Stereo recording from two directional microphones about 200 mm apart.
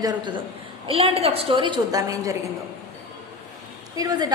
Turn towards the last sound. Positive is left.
turn(degrees=-20)  # may be behind; listen again after turning